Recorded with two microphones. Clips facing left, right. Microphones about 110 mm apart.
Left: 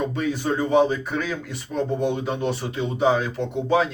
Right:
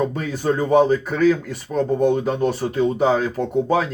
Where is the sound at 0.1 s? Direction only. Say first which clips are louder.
Right 2 dB; 45° right (ahead or behind).